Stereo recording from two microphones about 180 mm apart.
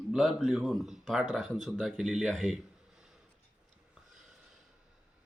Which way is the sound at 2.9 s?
5° right (ahead or behind).